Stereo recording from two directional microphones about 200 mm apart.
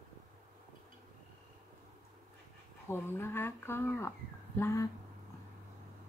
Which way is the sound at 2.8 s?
10° left (ahead or behind).